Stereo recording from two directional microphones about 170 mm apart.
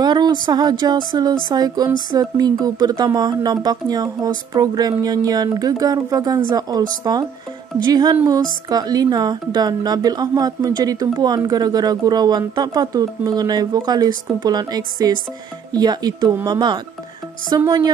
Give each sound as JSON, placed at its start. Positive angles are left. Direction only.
{"t": 0.0, "sound": "a woman's voice", "side_deg": -25}